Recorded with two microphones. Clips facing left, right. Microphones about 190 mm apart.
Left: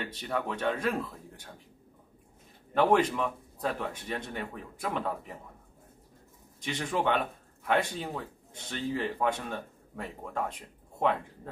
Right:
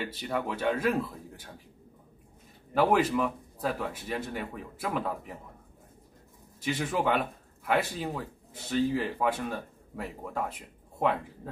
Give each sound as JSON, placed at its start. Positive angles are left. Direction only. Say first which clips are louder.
{"t": 0.0, "sound": "speech", "louder": "right 1 dB", "side_deg": -5}
{"t": 2.7, "sound": "speech", "louder": "even", "side_deg": -5}
{"t": 6.6, "sound": "speech", "louder": "right 1 dB", "side_deg": -5}